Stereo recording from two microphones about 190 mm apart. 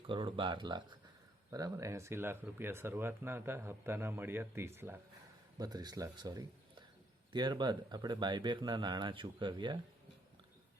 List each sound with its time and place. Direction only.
0.1 s speech: 25° right (ahead or behind)